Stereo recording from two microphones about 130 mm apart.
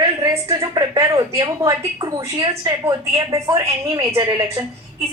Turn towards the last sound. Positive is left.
turn(degrees=-30)  # may be behind; listen again after turning